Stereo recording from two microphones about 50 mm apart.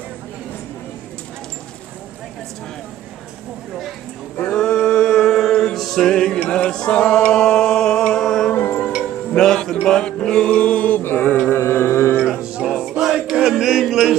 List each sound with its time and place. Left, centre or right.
4.6 s music: centre
8.5 s music: left
9.3 s music: centre
11.0 s mantra: left
11.5 s music: left
12.3 s music: centre
13.3 s chant: centre